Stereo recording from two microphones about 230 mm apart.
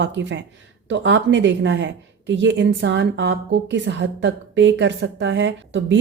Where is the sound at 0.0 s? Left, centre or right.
Right.